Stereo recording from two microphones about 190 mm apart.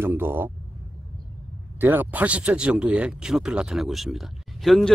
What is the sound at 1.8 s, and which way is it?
Speech, 10° right (ahead or behind).